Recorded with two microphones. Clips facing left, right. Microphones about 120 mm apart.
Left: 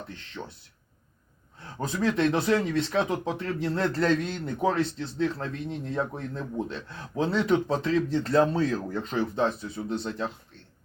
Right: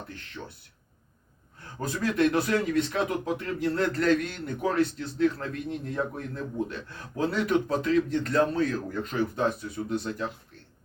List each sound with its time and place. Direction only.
1.8 s speech: 25° left (ahead or behind)